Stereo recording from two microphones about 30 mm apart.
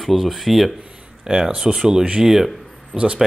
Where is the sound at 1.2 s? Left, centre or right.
Centre.